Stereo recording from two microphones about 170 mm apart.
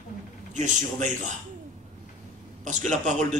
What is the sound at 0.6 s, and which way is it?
Speech, 45° right (ahead or behind).